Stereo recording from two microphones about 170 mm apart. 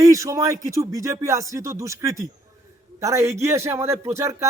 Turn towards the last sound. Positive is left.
turn(degrees=-15)  # may be behind; listen again after turning